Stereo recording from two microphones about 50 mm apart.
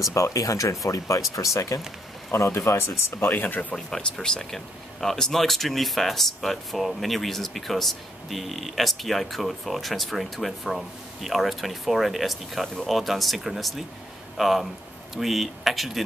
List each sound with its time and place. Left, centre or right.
0.1 s speech: left
2.3 s speech: left
3.7 s speech: centre